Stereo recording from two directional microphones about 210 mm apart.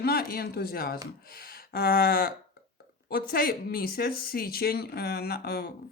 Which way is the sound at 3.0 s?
45° left (ahead or behind).